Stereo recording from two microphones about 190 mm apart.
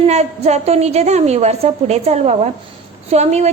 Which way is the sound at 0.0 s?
35° right (ahead or behind).